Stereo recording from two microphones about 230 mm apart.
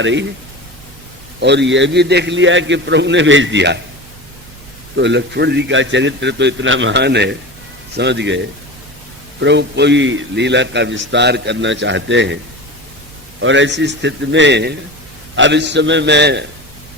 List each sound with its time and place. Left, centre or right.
0.0 s a man's voice: right
1.4 s a man's voice: right
4.9 s a man's voice: right
9.4 s a man's voice: right
13.4 s a man's voice: right